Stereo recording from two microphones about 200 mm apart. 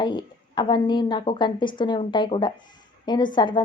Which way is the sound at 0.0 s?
25° left (ahead or behind).